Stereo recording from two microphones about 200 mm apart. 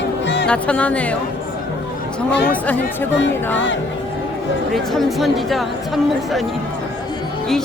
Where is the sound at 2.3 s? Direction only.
55° left (ahead or behind).